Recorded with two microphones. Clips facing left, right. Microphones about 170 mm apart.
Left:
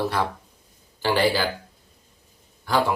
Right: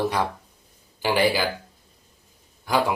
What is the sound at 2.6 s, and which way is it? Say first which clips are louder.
Speech: even; 15° right (ahead or behind).